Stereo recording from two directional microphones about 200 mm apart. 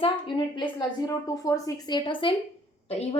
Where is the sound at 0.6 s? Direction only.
20° left (ahead or behind).